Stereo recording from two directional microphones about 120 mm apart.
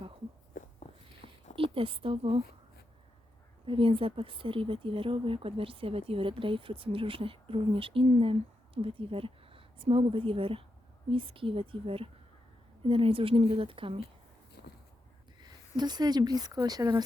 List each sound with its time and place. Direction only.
1.2 s a sound: 80° left
1.7 s speech: 50° right (ahead or behind)
3.7 s speech: 50° right (ahead or behind)
15.4 s speech: 35° right (ahead or behind)